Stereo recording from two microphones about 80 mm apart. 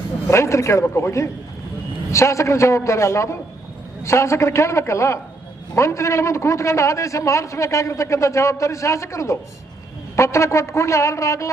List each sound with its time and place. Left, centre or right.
0.3 s a man's voice: left